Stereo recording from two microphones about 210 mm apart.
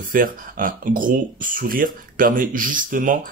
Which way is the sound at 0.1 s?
40° right (ahead or behind).